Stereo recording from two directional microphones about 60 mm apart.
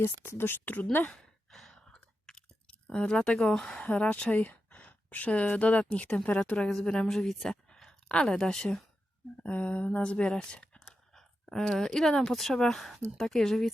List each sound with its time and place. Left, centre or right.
0.0 s a woman's voice: left
1.1 s sigh: centre
2.8 s speech: centre
3.8 s a woman's voice: left
6.7 s speech: centre
9.4 s a woman's voice: left; by 13.7 s centre